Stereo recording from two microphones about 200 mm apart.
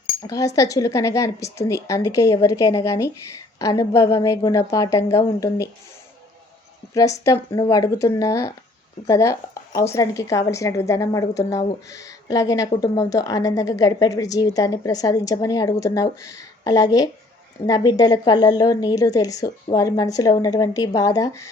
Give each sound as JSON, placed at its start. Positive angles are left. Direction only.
{"t": 0.2, "sound": "speech", "side_deg": 15}
{"t": 6.9, "sound": "a woman's voice", "side_deg": 15}